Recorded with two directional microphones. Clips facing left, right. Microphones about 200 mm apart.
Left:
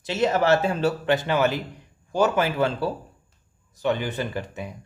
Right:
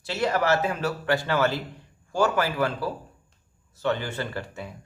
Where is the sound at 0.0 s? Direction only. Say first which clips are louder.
Left 3 dB; 20° left (ahead or behind).